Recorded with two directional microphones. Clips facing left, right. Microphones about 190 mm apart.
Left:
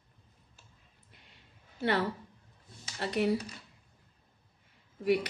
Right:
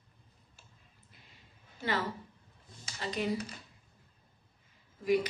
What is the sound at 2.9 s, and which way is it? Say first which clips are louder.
Speech: left 4 dB; 65° left (ahead or behind).